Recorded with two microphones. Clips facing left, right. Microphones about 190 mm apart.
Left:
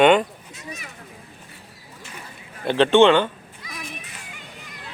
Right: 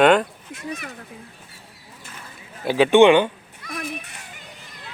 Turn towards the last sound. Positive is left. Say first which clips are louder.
# right 5 dB
turn(degrees=-60)  # may be behind; listen again after turning